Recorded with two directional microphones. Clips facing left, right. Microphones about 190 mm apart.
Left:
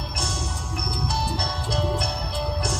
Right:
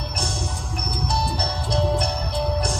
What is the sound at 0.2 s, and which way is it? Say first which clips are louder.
Music: right 2 dB; 35° right (ahead or behind).